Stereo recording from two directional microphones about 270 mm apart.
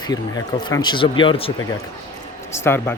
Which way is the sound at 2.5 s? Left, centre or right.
Centre.